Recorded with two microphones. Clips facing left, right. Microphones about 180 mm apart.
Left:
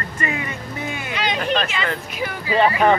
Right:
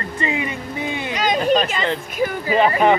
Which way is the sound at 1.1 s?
40° right (ahead or behind).